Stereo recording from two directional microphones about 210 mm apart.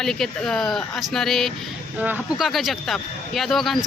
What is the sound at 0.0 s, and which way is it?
Speech, centre (ahead or behind).